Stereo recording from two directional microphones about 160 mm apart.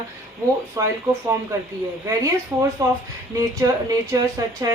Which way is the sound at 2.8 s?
20° right (ahead or behind).